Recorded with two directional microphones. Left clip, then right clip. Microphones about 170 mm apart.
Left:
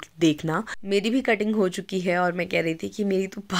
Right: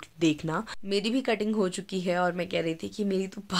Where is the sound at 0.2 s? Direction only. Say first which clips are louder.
Left 4 dB; 25° left (ahead or behind).